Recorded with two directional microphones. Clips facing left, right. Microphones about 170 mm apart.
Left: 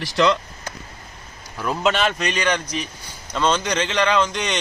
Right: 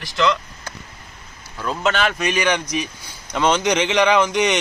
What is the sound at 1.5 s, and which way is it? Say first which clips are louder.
A man's voice: even; 10° left (ahead or behind).